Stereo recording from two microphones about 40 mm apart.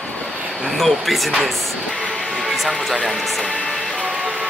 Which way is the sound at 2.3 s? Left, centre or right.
Centre.